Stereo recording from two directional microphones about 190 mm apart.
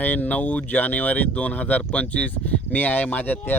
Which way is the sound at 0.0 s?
10° left (ahead or behind).